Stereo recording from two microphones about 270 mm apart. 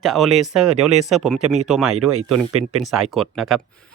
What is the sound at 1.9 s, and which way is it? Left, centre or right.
Speech, right.